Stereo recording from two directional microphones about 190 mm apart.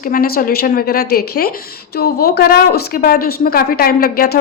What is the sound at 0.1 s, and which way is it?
Speech, 50° left (ahead or behind).